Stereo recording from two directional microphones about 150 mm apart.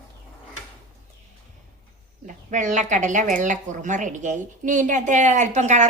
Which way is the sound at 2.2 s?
60° right (ahead or behind).